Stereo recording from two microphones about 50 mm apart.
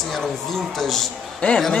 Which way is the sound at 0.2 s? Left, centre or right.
Centre.